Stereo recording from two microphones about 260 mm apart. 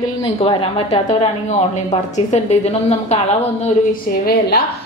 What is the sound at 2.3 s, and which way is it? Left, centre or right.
Speech, left.